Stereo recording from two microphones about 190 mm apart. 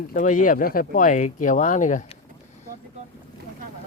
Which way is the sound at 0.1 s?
45° left (ahead or behind).